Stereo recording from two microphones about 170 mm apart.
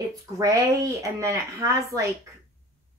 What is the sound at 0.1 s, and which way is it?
Speech, 20° right (ahead or behind).